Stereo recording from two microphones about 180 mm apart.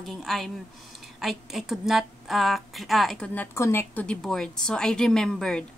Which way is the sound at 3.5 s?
15° left (ahead or behind).